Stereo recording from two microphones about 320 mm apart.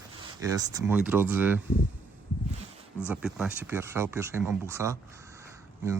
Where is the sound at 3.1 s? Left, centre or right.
Centre.